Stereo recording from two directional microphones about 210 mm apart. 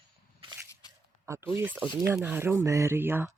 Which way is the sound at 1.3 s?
10° right (ahead or behind).